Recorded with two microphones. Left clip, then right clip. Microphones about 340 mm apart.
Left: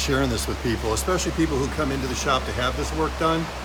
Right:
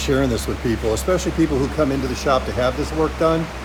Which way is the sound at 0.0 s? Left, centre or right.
Centre.